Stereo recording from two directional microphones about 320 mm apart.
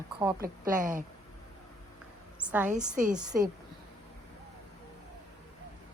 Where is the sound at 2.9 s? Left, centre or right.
Right.